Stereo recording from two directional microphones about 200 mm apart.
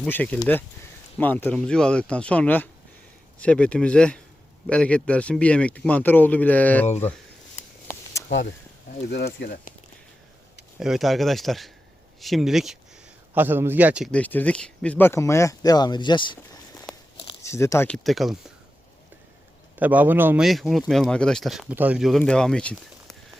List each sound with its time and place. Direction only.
0.0 s speech: 10° left (ahead or behind)
6.8 s speech: 35° left (ahead or behind)
8.3 s speech: 65° left (ahead or behind)
9.0 s speech: 55° left (ahead or behind)
10.8 s speech: centre (ahead or behind)
14.1 s speech: 10° left (ahead or behind)
19.8 s speech: 10° right (ahead or behind)